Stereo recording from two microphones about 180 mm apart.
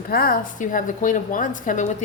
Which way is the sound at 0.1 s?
55° left (ahead or behind).